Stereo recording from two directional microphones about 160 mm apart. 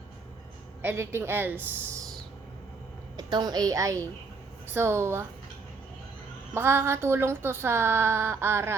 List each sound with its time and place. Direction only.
0.8 s speech: 15° right (ahead or behind)
3.2 s a woman's voice: 25° right (ahead or behind)
6.5 s speech: 15° right (ahead or behind)